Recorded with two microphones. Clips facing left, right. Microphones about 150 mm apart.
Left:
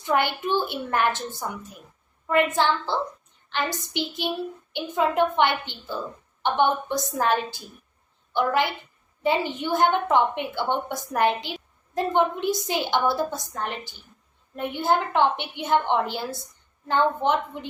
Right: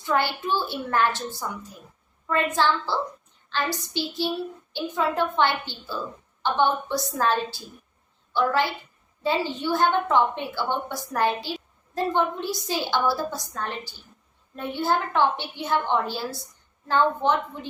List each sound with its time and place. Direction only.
0.0 s a woman's voice: 20° left (ahead or behind)